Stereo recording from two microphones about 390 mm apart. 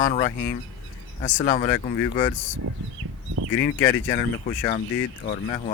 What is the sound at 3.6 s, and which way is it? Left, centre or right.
Speech, centre.